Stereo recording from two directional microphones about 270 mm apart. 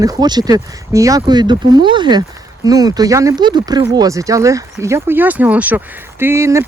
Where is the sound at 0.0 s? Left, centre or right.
Centre.